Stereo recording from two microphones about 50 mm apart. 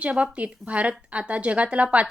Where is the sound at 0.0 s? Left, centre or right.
Right.